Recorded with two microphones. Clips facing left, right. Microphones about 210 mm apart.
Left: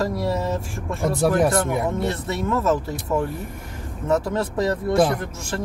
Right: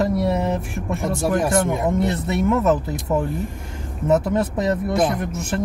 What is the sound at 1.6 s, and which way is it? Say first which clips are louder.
Speech: right 3 dB; 20° right (ahead or behind).